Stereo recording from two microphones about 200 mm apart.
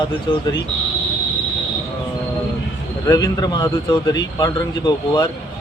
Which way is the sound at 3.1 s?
20° left (ahead or behind).